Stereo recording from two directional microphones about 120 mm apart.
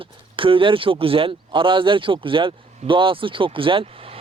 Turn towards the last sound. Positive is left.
turn(degrees=-50)  # may be behind; listen again after turning